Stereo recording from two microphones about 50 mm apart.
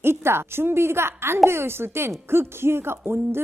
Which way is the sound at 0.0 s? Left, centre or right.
Right.